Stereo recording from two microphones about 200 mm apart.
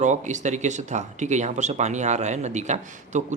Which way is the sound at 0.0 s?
35° right (ahead or behind).